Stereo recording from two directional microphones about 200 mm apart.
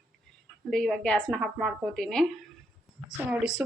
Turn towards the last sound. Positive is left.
turn(degrees=-5)  # may be behind; listen again after turning